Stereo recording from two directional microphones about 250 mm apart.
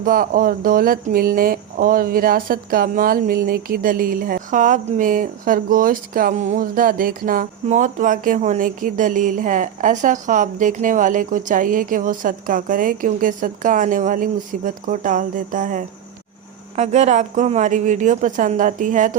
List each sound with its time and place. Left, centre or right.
0.0 s speech: right